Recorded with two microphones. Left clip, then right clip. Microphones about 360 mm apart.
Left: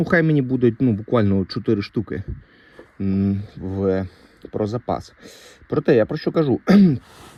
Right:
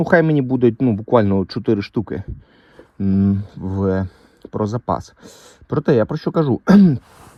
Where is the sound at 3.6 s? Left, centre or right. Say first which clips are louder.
Right 2 dB; right.